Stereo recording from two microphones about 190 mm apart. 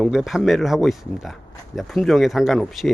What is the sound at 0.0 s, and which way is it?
Speech, centre (ahead or behind).